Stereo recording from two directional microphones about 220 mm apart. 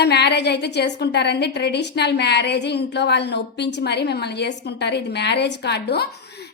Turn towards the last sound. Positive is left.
turn(degrees=50)  # may be behind; listen again after turning